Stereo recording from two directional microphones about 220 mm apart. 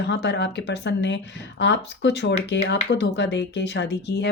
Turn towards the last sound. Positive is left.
turn(degrees=50)  # may be behind; listen again after turning